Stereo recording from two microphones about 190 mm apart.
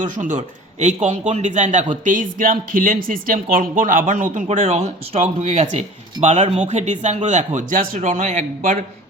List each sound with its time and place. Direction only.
0.0 s a man's voice: 45° right (ahead or behind)